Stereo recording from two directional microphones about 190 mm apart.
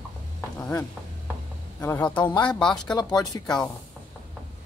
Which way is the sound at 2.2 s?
25° left (ahead or behind).